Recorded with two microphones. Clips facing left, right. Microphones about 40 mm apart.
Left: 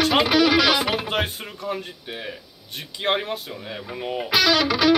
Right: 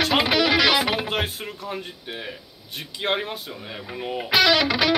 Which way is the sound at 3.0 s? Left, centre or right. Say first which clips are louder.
Left 2 dB; centre.